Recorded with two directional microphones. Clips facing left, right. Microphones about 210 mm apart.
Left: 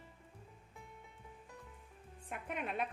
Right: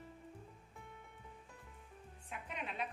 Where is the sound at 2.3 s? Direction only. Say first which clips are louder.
Left 5 dB; 55° left (ahead or behind).